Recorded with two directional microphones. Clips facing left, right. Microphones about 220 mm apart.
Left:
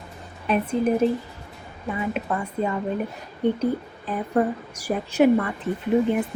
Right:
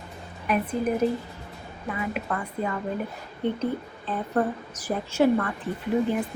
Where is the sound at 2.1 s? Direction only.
25° left (ahead or behind).